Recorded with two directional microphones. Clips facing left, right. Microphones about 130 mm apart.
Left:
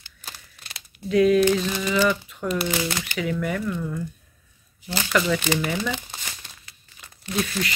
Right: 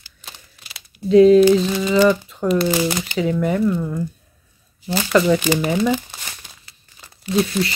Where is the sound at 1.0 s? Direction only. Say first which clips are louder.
Right 8 dB; 30° right (ahead or behind).